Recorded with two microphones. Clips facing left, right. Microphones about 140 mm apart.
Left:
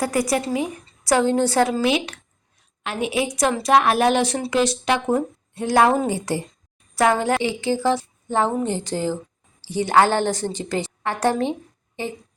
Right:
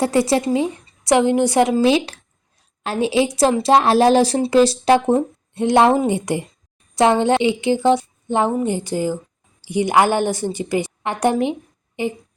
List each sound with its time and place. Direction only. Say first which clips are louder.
0.0 s a woman's voice: right 5 dB; 25° right (ahead or behind)
1.8 s a woman's voice: right 5 dB; 30° right (ahead or behind); by 12.1 s 15° right (ahead or behind)